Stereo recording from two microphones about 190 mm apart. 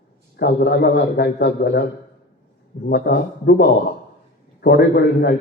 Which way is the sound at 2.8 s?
60° left (ahead or behind).